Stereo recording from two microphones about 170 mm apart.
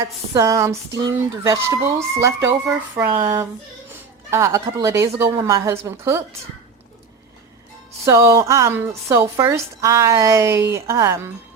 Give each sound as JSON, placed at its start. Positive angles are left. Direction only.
{"t": 0.0, "sound": "a sound", "side_deg": -20}
{"t": 1.5, "sound": "speech", "side_deg": -15}
{"t": 8.0, "sound": "speech", "side_deg": -20}